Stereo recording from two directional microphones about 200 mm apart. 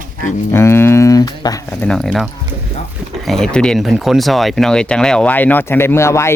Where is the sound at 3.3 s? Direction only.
5° left (ahead or behind).